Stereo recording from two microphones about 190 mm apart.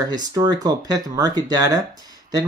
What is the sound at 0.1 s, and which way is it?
Speech, 20° right (ahead or behind).